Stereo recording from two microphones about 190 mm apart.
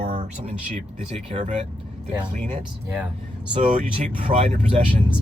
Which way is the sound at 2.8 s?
10° right (ahead or behind).